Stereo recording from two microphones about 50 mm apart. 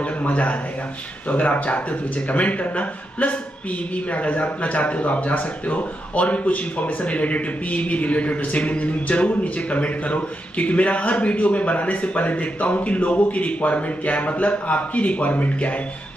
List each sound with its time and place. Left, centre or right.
0.2 s a man's voice: left